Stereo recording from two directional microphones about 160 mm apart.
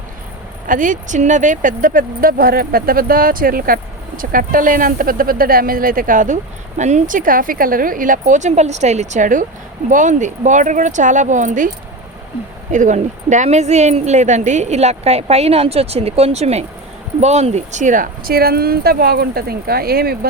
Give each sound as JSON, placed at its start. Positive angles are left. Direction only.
{"t": 0.7, "sound": "speech", "side_deg": -55}
{"t": 12.7, "sound": "speech", "side_deg": -50}